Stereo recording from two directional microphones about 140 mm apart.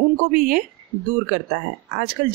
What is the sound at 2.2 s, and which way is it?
Speech, 70° right (ahead or behind).